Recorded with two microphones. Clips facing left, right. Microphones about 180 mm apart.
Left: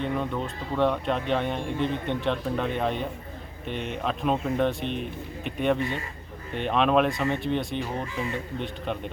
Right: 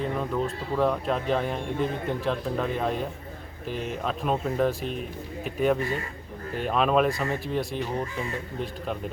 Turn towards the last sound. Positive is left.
turn(degrees=0)  # may be behind; listen again after turning